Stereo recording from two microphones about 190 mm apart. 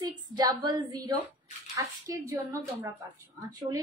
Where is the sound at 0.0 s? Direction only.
20° right (ahead or behind).